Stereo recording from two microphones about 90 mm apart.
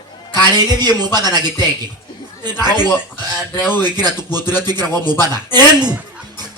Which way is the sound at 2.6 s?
25° left (ahead or behind).